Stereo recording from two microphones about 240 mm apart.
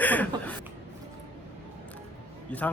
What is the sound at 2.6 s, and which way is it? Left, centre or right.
Speech, centre.